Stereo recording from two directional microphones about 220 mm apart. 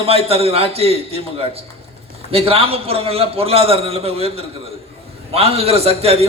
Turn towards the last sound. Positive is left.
turn(degrees=-25)  # may be behind; listen again after turning